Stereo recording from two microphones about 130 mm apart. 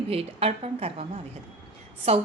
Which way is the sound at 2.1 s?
50° right (ahead or behind).